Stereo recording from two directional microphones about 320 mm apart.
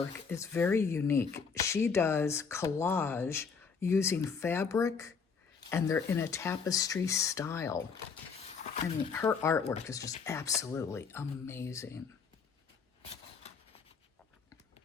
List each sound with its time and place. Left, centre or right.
0.3 s speech: centre
9.1 s speech: centre
10.0 s speech: left
10.2 s speech: centre